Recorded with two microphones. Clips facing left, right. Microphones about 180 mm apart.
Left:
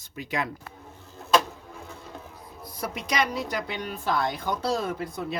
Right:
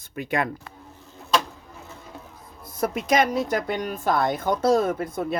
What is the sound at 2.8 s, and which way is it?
A woman's voice, 50° right (ahead or behind).